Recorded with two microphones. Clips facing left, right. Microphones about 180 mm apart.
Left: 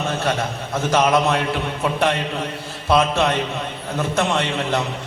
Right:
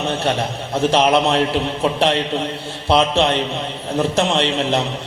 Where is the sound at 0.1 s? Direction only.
30° right (ahead or behind).